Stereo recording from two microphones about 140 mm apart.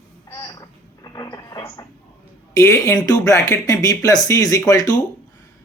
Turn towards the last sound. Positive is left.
turn(degrees=25)  # may be behind; listen again after turning